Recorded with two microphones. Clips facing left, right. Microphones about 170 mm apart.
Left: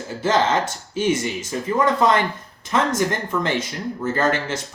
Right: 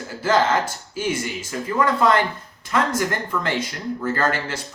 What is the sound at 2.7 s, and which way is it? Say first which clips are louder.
Speech: left 1 dB; 20° left (ahead or behind).